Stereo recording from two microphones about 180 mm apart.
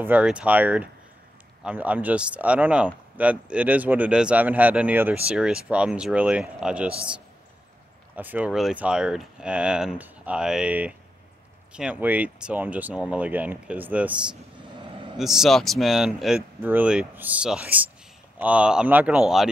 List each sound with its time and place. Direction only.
0.0 s speech: 5° right (ahead or behind)
8.2 s speech: 10° right (ahead or behind)
14.8 s vehicle: 30° right (ahead or behind)
15.1 s speech: centre (ahead or behind)